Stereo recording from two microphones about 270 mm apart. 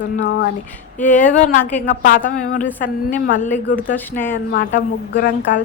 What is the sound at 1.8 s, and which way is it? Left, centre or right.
A woman's voice, left.